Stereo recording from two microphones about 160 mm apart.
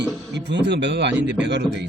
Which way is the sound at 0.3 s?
90° right.